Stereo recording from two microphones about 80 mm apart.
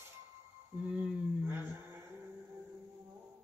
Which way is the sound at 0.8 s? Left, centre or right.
Centre.